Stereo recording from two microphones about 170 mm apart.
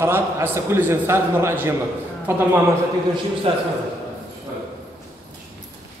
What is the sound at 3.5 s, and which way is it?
Speech, 35° right (ahead or behind).